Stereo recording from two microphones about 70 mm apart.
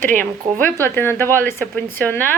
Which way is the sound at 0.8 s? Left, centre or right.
Left.